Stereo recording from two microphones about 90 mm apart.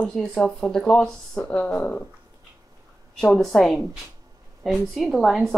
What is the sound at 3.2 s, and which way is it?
Speech, 5° left (ahead or behind).